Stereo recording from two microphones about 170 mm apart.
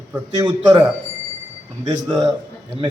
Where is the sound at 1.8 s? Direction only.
25° right (ahead or behind).